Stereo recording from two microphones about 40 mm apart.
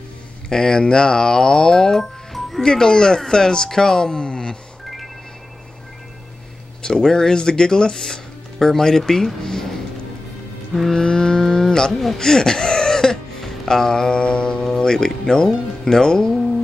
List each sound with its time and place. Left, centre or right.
0.5 s speech: centre
2.6 s speech: centre
6.8 s speech: centre
10.7 s cattle: centre
12.2 s music: centre